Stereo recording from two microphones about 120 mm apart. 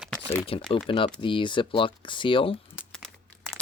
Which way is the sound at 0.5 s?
50° left (ahead or behind).